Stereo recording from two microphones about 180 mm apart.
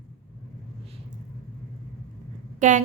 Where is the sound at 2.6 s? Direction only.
40° right (ahead or behind).